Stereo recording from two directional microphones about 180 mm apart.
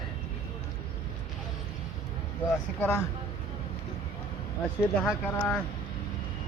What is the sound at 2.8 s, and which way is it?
Speech, 10° left (ahead or behind).